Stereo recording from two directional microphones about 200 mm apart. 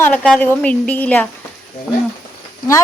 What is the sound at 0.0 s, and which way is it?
A woman's voice, 5° left (ahead or behind).